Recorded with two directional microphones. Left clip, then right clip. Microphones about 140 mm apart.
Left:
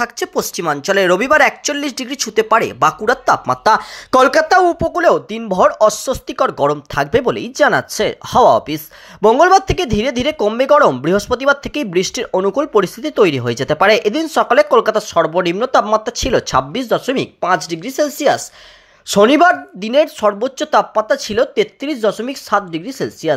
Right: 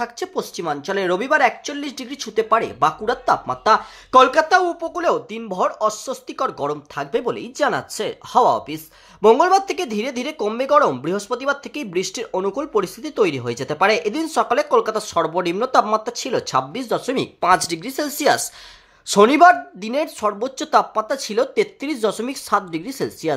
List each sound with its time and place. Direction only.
0.0 s speech: 25° left (ahead or behind)
3.6 s speech: 50° left (ahead or behind); by 23.3 s 10° left (ahead or behind)